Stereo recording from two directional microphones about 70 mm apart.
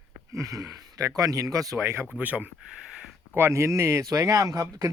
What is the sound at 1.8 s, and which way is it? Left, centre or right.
Speech, right.